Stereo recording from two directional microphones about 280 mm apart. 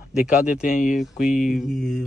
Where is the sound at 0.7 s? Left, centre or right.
Left.